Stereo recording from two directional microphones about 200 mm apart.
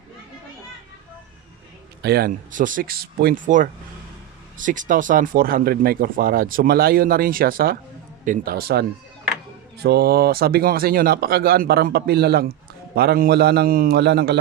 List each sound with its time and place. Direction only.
2.0 s speech: 50° right (ahead or behind)